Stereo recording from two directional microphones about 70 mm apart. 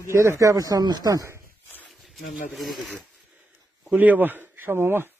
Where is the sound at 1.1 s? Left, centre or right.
Right.